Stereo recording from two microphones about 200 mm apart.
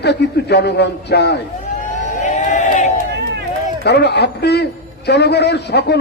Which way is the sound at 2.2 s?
40° left (ahead or behind).